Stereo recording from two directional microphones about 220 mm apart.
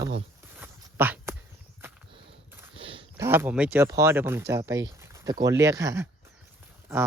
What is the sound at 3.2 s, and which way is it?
Speech, 10° right (ahead or behind).